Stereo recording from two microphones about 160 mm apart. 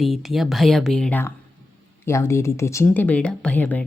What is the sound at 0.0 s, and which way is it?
Speech, centre (ahead or behind).